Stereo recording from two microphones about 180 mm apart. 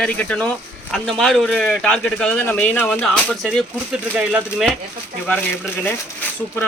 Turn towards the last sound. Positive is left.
turn(degrees=10)  # may be behind; listen again after turning